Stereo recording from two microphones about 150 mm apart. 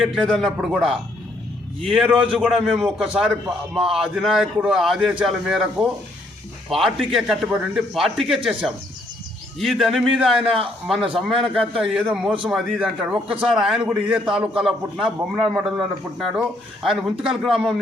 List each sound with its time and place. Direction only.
0.0 s a man's voice: centre (ahead or behind)
9.6 s a man's voice: centre (ahead or behind)
11.0 s a man's voice: 35° right (ahead or behind)
11.5 s a man's voice: 5° right (ahead or behind)